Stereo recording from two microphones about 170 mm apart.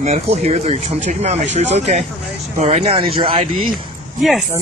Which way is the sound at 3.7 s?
Centre (ahead or behind).